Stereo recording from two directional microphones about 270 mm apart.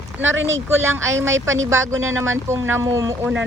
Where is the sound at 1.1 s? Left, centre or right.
Centre.